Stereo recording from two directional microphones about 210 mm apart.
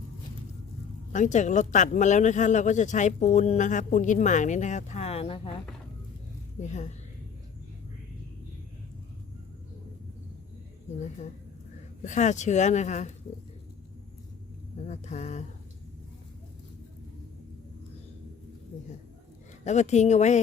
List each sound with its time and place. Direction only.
1.1 s speech: 35° left (ahead or behind)
6.6 s speech: 35° left (ahead or behind)
12.0 s speech: 35° left (ahead or behind)
14.8 s speech: 35° left (ahead or behind)
19.6 s speech: 35° left (ahead or behind)